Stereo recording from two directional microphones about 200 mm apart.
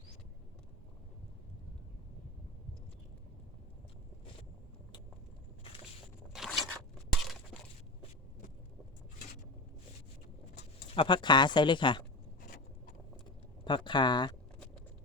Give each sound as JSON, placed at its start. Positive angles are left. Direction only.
{"t": 6.3, "sound": "zipper", "side_deg": 0}
{"t": 7.2, "sound": "a sound", "side_deg": 0}
{"t": 10.9, "sound": "speech", "side_deg": 25}
{"t": 13.7, "sound": "speech", "side_deg": 25}